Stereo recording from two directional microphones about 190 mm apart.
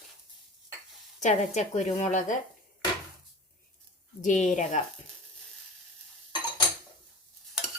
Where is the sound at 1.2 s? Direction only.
35° left (ahead or behind).